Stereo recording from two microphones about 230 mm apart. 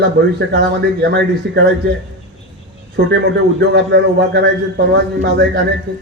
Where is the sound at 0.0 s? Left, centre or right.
Right.